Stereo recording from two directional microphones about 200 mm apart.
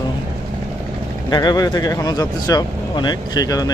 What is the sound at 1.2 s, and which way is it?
Speech, 20° left (ahead or behind).